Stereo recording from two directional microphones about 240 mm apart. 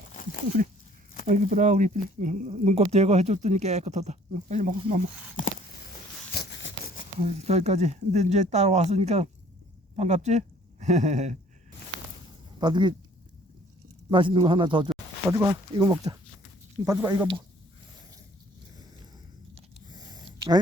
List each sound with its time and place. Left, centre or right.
1.3 s speech: right
6.3 s a sound: left
7.2 s speech: right
12.5 s speech: centre
14.1 s speech: centre
19.5 s a sound: centre